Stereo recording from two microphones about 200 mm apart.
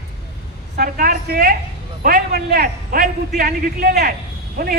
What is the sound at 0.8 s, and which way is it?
A woman's voice, 50° right (ahead or behind).